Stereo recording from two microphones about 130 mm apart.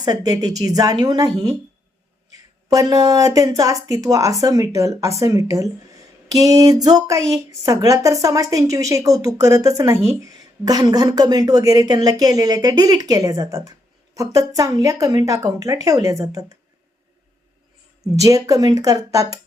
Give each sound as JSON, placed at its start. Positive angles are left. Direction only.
{"t": 0.0, "sound": "speech", "side_deg": -30}
{"t": 2.7, "sound": "speech", "side_deg": -25}
{"t": 18.2, "sound": "speech", "side_deg": -25}